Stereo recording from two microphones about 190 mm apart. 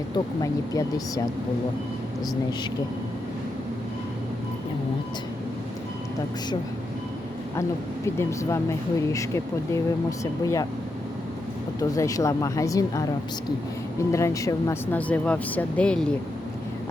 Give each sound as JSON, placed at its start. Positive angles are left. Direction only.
{"t": 0.4, "sound": "speech", "side_deg": 20}
{"t": 8.0, "sound": "speech", "side_deg": 15}
{"t": 11.8, "sound": "speech", "side_deg": 15}
{"t": 14.1, "sound": "speech", "side_deg": 15}